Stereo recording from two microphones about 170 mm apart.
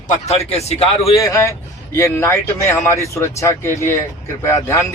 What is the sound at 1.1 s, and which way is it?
Speech, 20° left (ahead or behind).